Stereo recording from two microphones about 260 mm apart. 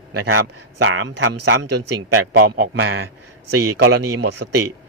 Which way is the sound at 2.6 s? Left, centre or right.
Right.